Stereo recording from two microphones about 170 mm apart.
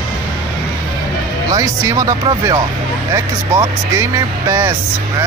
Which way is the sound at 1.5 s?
20° right (ahead or behind).